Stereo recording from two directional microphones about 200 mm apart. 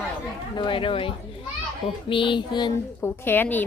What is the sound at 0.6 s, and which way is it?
Speech, 25° left (ahead or behind).